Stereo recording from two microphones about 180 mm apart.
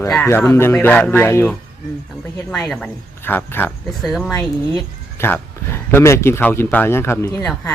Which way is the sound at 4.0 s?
Centre (ahead or behind).